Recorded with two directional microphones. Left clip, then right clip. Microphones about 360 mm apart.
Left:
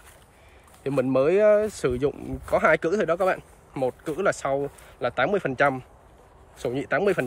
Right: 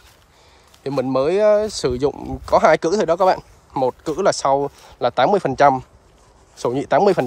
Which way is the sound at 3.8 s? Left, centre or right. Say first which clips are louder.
Right 7 dB; centre.